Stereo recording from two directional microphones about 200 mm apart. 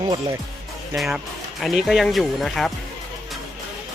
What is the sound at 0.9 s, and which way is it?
Speech, centre (ahead or behind).